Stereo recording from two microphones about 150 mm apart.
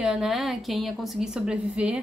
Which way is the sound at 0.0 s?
5° right (ahead or behind).